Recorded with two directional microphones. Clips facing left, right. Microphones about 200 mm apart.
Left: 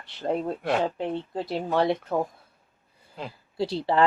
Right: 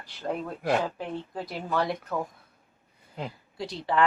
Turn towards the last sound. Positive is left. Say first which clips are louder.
# left 4 dB
turn(degrees=30)  # may be behind; listen again after turning